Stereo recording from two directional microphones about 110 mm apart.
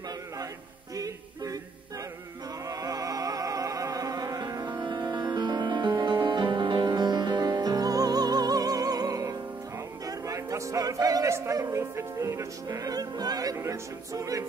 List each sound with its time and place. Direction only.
0.9 s music: 35° right (ahead or behind)
2.6 s music: 30° right (ahead or behind)